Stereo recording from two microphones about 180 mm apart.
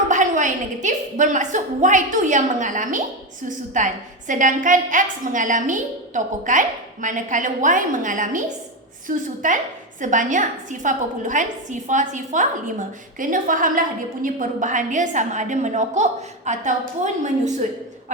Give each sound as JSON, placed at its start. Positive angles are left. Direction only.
{"t": 0.1, "sound": "a woman's voice", "side_deg": -45}